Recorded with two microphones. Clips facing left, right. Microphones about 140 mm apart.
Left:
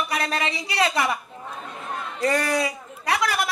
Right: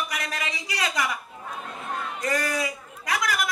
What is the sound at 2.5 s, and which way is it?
Chatter, 30° left (ahead or behind).